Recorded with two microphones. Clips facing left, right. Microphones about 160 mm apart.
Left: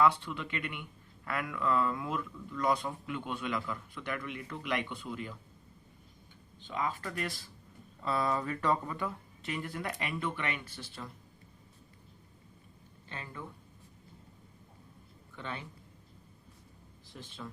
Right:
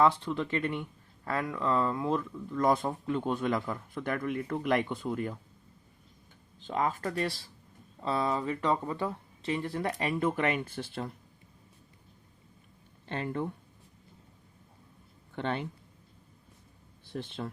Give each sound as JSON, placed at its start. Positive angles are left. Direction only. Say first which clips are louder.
{"t": 0.0, "sound": "speech", "louder": "right 3 dB", "side_deg": -35}
{"t": 6.7, "sound": "speech", "louder": "right 5 dB", "side_deg": -40}
{"t": 10.8, "sound": "speech", "louder": "right 8 dB", "side_deg": -55}
{"t": 13.1, "sound": "speech", "louder": "right 11 dB", "side_deg": -60}
{"t": 15.4, "sound": "speech", "louder": "right 9 dB", "side_deg": -60}
{"t": 17.1, "sound": "speech", "louder": "right 9 dB", "side_deg": -65}